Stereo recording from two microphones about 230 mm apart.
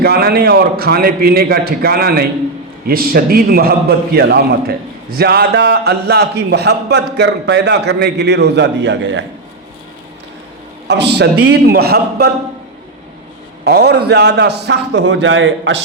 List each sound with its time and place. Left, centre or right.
0.0 s a man's voice: right
10.8 s a man's voice: right
13.7 s a man's voice: right